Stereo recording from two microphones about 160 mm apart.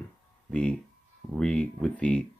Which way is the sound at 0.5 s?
5° left (ahead or behind).